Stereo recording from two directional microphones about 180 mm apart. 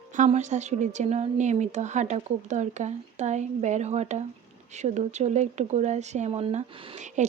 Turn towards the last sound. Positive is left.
turn(degrees=-40)  # may be behind; listen again after turning